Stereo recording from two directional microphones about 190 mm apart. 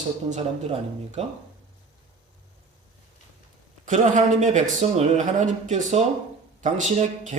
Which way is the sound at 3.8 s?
40° right (ahead or behind).